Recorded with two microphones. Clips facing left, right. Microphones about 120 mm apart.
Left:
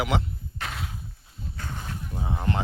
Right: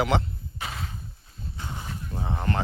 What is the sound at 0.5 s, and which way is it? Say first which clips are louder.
Horse: left 1 dB; centre (ahead or behind).